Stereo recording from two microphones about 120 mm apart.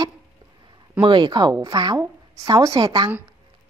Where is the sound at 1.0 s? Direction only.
40° right (ahead or behind).